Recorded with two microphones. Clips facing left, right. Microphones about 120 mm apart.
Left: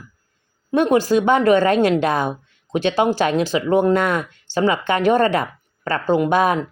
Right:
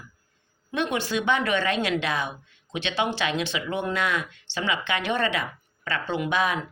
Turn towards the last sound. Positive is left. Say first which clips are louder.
# left 8 dB
turn(degrees=45)  # may be behind; listen again after turning